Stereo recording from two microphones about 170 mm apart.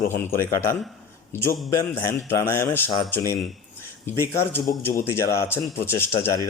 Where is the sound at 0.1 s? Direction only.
15° left (ahead or behind).